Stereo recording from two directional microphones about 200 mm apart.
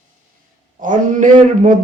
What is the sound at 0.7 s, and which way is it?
Speech, 40° right (ahead or behind).